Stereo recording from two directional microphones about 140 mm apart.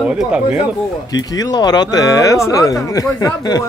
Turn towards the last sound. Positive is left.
turn(degrees=30)  # may be behind; listen again after turning